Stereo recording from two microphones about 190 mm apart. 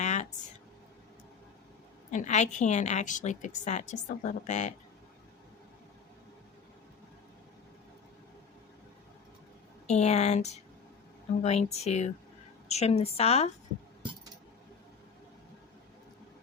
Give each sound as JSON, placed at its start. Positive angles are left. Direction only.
{"t": 0.0, "sound": "a sound", "side_deg": 35}
{"t": 2.0, "sound": "a woman's voice", "side_deg": 40}
{"t": 9.8, "sound": "a woman's voice", "side_deg": 35}